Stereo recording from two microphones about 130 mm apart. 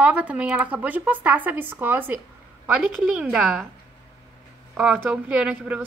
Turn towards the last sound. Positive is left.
turn(degrees=-10)  # may be behind; listen again after turning